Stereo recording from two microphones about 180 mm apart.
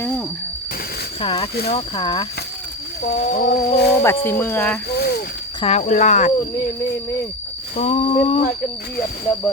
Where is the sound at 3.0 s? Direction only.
55° left (ahead or behind).